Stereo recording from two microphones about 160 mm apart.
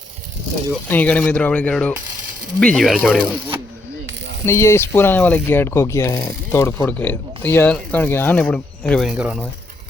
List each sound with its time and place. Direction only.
0.9 s speech: 10° left (ahead or behind)
4.4 s speech: 15° left (ahead or behind); by 9.4 s 5° right (ahead or behind)